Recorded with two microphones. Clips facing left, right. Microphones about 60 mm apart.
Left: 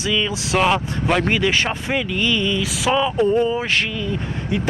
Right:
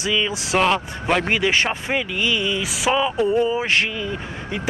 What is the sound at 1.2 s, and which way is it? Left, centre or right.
Speech, centre.